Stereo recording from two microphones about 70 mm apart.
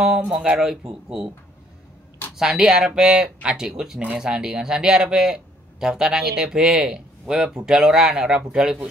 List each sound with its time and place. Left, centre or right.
0.0 s speech: centre
2.3 s speech: centre